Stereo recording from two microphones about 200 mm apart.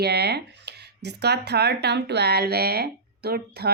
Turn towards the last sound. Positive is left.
turn(degrees=-50)  # may be behind; listen again after turning